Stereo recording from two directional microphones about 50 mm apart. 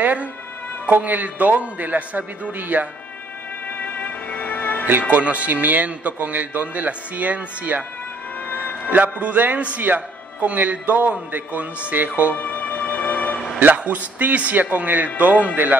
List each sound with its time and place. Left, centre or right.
0.0 s music: right
0.8 s a man's voice: right
3.8 s music: left
5.1 s a man's voice: right
8.5 s music: left
8.9 s a man's voice: right
12.4 s music: left
13.6 s a man's voice: right